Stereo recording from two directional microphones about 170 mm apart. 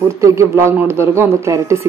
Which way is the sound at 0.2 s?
15° right (ahead or behind).